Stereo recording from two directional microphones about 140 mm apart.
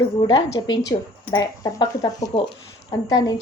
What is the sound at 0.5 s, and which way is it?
A woman's voice, 25° left (ahead or behind).